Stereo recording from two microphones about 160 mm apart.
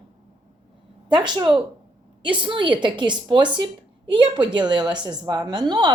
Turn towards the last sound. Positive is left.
turn(degrees=-30)  # may be behind; listen again after turning